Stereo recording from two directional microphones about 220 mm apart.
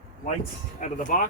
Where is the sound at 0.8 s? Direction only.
35° left (ahead or behind).